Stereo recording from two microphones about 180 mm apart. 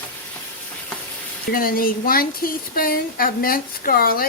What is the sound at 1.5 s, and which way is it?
Speech, 55° left (ahead or behind).